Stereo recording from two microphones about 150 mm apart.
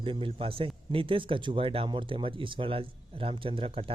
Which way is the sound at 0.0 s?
35° right (ahead or behind).